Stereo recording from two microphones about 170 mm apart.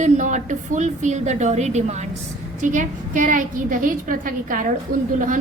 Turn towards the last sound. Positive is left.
turn(degrees=-50)  # may be behind; listen again after turning